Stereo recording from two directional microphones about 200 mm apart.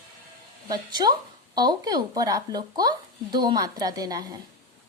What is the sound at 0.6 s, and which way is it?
Speech, 20° right (ahead or behind).